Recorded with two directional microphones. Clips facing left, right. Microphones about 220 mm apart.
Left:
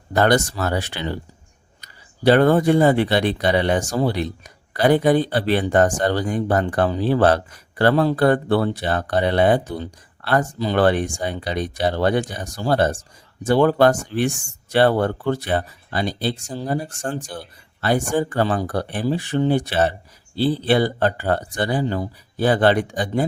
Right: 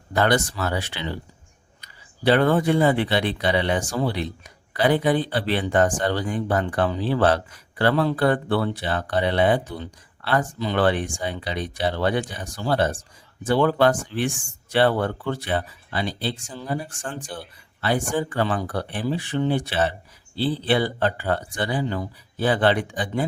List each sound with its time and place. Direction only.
0.1 s speech: 45° left (ahead or behind)